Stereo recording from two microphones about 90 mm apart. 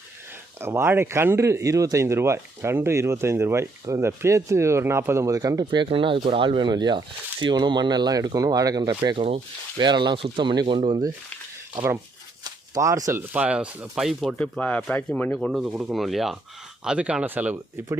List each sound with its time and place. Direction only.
0.6 s speech: 25° right (ahead or behind)
5.7 s speech: 70° right (ahead or behind); by 9.0 s 45° right (ahead or behind)
9.1 s speech: 90° right
9.7 s speech: 55° right (ahead or behind)
10.2 s speech: 70° right (ahead or behind)
12.5 s shuffling cards: 40° right (ahead or behind)
13.1 s speech: 15° right (ahead or behind)
13.9 s speech: 5° right (ahead or behind)
14.6 s speech: 10° left (ahead or behind)
15.4 s speech: centre (ahead or behind); by 17.6 s 20° right (ahead or behind)